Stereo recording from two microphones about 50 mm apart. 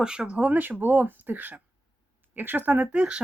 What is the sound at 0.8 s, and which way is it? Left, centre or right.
Speech, right.